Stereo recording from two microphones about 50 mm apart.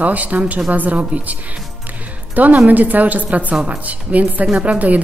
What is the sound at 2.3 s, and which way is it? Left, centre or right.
A woman's voice, right.